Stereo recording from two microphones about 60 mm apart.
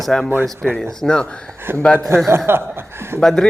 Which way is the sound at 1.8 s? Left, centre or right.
Centre.